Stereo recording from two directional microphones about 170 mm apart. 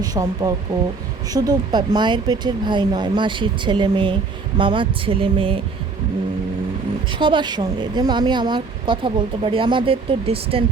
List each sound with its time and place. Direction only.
0.0 s speech: 20° right (ahead or behind)
7.1 s speech: 30° right (ahead or behind)